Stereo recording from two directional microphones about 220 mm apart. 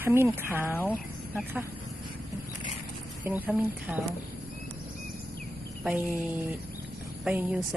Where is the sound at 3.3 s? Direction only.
10° right (ahead or behind).